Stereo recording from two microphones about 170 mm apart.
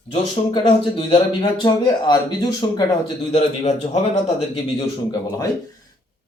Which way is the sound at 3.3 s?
40° left (ahead or behind).